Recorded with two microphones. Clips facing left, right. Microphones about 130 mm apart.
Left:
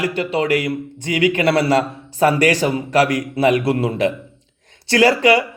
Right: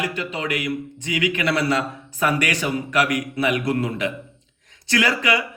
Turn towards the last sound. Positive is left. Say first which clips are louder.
# left 8 dB
turn(degrees=30)  # may be behind; listen again after turning